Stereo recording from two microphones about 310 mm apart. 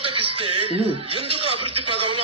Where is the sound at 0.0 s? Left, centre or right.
Centre.